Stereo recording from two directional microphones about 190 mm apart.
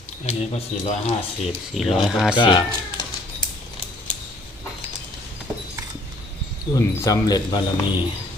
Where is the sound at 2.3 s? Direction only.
25° left (ahead or behind).